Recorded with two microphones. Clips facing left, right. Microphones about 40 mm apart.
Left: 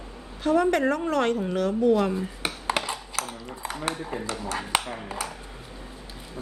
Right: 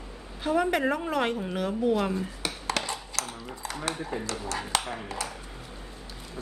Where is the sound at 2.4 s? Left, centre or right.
Left.